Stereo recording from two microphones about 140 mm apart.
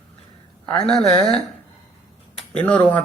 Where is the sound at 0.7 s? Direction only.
5° left (ahead or behind).